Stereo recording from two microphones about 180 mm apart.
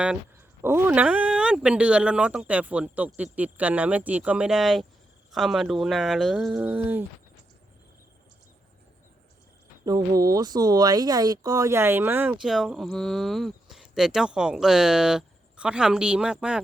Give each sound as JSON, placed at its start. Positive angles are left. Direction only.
{"t": 0.6, "sound": "speech", "side_deg": -10}
{"t": 9.8, "sound": "speech", "side_deg": -20}